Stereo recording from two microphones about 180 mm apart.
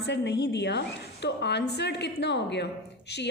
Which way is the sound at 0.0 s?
75° left (ahead or behind).